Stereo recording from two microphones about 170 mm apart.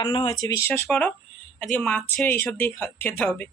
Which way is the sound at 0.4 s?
15° left (ahead or behind).